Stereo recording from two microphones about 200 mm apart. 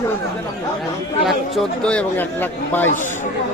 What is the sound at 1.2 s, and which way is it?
Speech, 5° left (ahead or behind).